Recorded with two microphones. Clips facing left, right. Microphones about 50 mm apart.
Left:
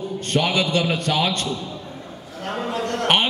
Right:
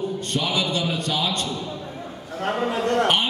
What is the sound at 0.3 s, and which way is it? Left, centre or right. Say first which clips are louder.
A man's voice: left 6 dB; left.